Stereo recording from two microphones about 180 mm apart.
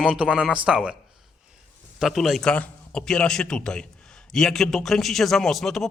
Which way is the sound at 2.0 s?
Centre (ahead or behind).